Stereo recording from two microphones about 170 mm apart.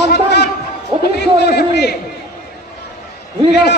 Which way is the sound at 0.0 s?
80° left.